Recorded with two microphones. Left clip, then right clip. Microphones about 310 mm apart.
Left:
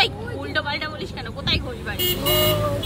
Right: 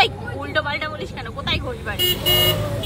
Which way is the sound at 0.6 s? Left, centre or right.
Centre.